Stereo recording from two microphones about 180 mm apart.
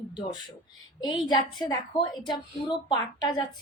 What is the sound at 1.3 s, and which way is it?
A woman's voice, 20° left (ahead or behind).